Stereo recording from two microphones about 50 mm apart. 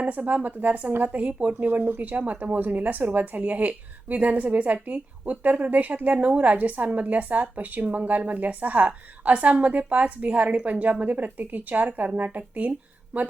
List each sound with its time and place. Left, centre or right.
0.0 s speech: right